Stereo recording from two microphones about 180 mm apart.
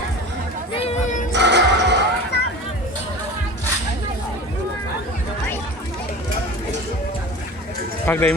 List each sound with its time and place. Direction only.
0.7 s music: 30° left (ahead or behind)
1.3 s music: 75° right (ahead or behind)
2.3 s a sound: 70° left (ahead or behind)
8.0 s speech: 10° left (ahead or behind)